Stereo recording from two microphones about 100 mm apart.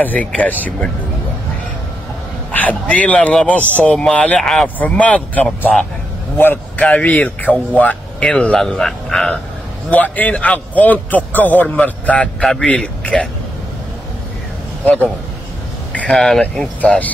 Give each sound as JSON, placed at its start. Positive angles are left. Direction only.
{"t": 0.0, "sound": "a man's voice", "side_deg": 15}
{"t": 2.5, "sound": "a man's voice", "side_deg": 15}
{"t": 4.7, "sound": "a man's voice", "side_deg": 15}
{"t": 9.8, "sound": "a man's voice", "side_deg": 15}
{"t": 15.9, "sound": "a sound", "side_deg": 15}
{"t": 16.2, "sound": "a man's voice", "side_deg": 5}